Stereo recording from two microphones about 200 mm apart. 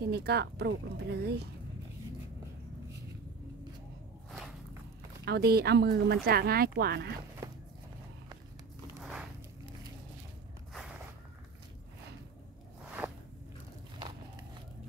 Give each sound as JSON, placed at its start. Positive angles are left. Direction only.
{"t": 0.1, "sound": "speech", "side_deg": -55}
{"t": 5.2, "sound": "speech", "side_deg": -55}
{"t": 13.0, "sound": "biting", "side_deg": -5}